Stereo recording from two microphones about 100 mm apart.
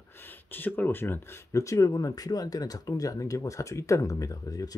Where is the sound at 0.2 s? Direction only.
20° left (ahead or behind).